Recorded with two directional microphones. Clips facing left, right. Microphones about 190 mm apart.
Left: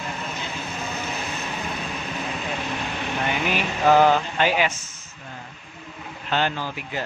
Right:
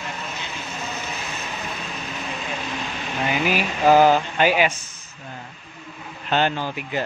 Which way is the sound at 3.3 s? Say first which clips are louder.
Right 4 dB; 5° right (ahead or behind).